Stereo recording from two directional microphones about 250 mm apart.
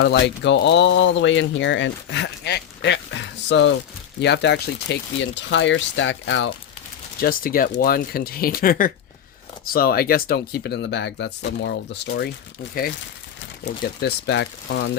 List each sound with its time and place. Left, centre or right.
0.0 s speech: left
7.2 s speech: left
13.7 s speech: left